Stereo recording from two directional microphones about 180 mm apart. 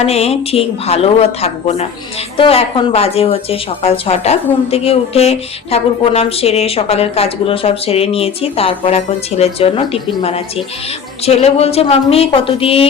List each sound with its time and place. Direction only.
0.0 s speech: 35° left (ahead or behind)